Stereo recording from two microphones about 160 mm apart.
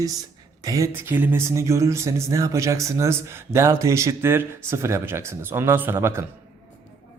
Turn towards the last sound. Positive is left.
turn(degrees=-15)  # may be behind; listen again after turning